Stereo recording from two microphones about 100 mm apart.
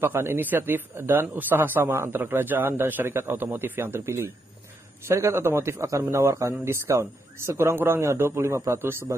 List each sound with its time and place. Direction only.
0.0 s speech: 20° right (ahead or behind)